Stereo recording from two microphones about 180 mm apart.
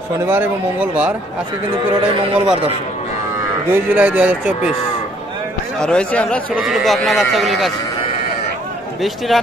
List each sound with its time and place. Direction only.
0.3 s a man's voice: 10° right (ahead or behind)
2.4 s a man's voice: 25° right (ahead or behind)
3.7 s a man's voice: 10° right (ahead or behind)
5.8 s speech: 5° left (ahead or behind)
9.3 s speech: centre (ahead or behind)